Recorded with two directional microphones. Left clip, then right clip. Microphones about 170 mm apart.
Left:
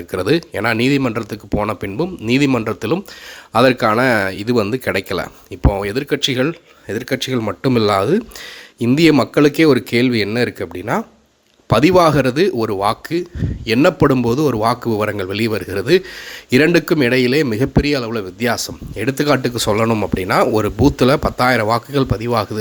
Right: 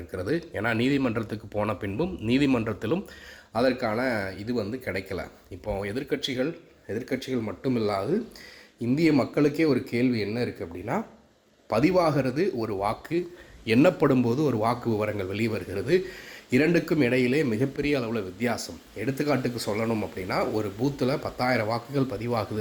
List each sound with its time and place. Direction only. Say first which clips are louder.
0.2 s speech: left 11 dB; 35° left (ahead or behind)
3.5 s speech: left 12 dB; 40° left (ahead or behind)